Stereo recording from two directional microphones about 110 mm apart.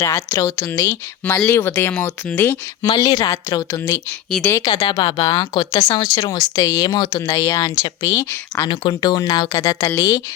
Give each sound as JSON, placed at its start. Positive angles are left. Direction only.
{"t": 0.0, "sound": "speech", "side_deg": 30}
{"t": 2.8, "sound": "speech", "side_deg": 35}
{"t": 8.6, "sound": "speech", "side_deg": 50}